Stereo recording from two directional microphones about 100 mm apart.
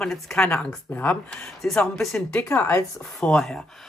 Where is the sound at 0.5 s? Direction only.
20° left (ahead or behind).